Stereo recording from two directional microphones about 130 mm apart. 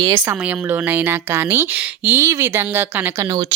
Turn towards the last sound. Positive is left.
turn(degrees=-30)  # may be behind; listen again after turning